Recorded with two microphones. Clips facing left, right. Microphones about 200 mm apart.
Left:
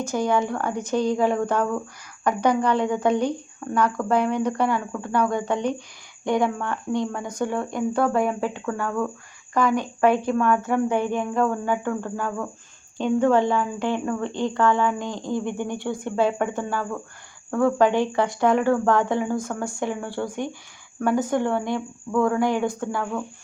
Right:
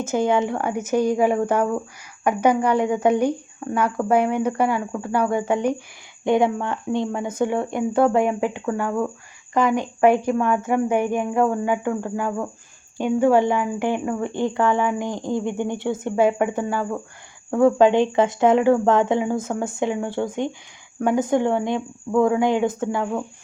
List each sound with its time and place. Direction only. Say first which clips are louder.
0.1 s speech: right 3 dB; 20° right (ahead or behind)
6.2 s speech: right 4 dB; 20° right (ahead or behind)